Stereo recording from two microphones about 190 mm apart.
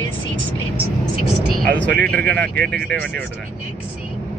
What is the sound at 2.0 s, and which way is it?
Speech, 5° left (ahead or behind).